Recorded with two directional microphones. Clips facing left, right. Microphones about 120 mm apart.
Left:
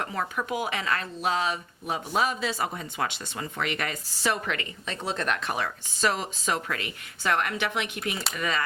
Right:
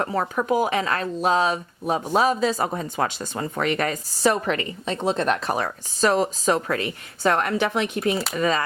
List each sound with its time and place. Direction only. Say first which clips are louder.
0.0 s speech: right 6 dB; 40° right (ahead or behind)